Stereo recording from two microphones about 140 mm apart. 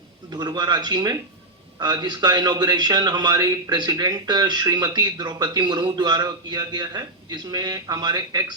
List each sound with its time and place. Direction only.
0.3 s a man's voice: 30° right (ahead or behind)